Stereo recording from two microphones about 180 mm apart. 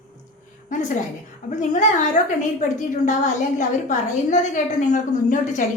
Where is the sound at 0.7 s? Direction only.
45° left (ahead or behind).